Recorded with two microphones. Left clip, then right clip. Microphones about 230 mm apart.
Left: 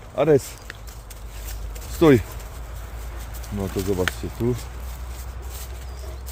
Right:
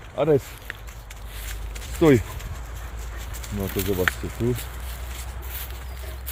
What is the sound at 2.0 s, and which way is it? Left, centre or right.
Speech, centre.